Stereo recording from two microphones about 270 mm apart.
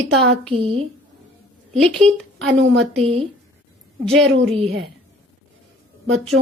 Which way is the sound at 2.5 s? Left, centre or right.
Right.